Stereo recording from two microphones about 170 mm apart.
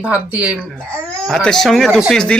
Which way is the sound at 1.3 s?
5° left (ahead or behind).